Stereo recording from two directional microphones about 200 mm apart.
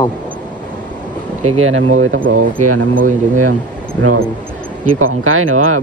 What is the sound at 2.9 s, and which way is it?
Speech, 40° right (ahead or behind).